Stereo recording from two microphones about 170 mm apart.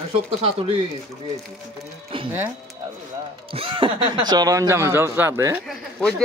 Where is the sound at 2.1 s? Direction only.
30° right (ahead or behind).